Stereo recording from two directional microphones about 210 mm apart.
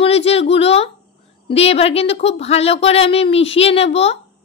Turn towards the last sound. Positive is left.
turn(degrees=30)  # may be behind; listen again after turning